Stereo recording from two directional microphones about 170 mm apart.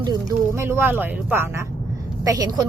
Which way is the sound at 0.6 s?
15° right (ahead or behind).